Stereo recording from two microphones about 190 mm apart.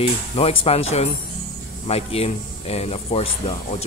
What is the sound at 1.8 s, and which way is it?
Speech, 30° left (ahead or behind).